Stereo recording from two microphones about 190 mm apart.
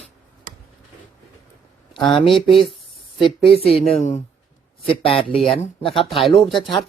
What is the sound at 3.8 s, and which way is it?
Speech, 35° left (ahead or behind).